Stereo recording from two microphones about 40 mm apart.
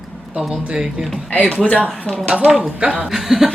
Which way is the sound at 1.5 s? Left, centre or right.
Left.